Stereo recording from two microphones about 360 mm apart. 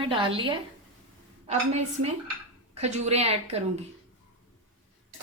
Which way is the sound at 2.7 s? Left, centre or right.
Centre.